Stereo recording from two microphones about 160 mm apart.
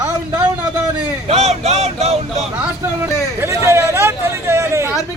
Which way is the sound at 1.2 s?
40° right (ahead or behind).